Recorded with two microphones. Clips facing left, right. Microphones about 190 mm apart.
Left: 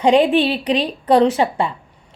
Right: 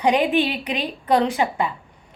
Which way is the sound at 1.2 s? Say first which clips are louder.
Left 5 dB; 30° left (ahead or behind).